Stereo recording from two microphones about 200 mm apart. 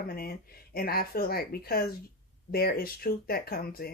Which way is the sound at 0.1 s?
50° left (ahead or behind).